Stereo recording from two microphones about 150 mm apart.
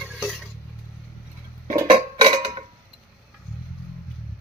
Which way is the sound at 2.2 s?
40° right (ahead or behind).